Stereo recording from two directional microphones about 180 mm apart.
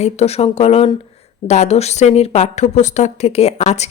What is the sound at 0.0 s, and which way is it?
Speech, 35° left (ahead or behind).